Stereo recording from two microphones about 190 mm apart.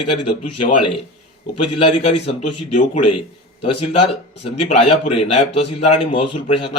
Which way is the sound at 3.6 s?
30° left (ahead or behind).